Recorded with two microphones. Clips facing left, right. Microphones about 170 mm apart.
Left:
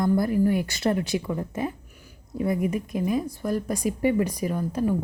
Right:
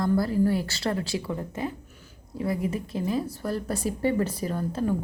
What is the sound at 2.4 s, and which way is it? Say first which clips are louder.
Speech: left 3 dB; 20° left (ahead or behind).